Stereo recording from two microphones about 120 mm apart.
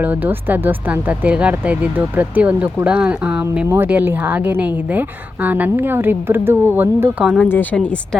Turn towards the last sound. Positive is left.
turn(degrees=10)  # may be behind; listen again after turning